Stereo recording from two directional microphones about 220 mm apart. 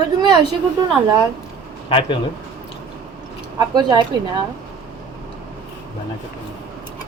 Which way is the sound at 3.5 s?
20° right (ahead or behind).